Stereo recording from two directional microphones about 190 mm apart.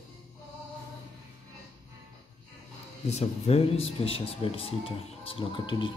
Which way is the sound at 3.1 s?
35° left (ahead or behind).